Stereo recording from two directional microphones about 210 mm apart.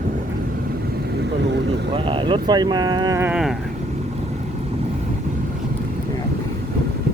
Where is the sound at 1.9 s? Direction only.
25° right (ahead or behind); by 3.6 s centre (ahead or behind).